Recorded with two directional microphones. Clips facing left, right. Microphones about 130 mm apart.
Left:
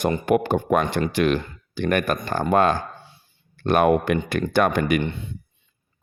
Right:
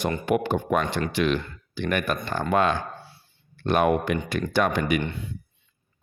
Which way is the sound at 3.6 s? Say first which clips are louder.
Left 3 dB; 50° left (ahead or behind).